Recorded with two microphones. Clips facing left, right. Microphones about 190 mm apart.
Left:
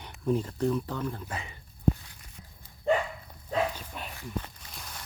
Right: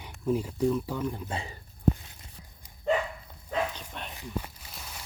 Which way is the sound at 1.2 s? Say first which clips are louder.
Right 3 dB; 30° right (ahead or behind).